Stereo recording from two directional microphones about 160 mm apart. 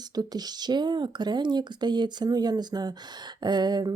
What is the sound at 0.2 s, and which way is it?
Speech, 25° right (ahead or behind).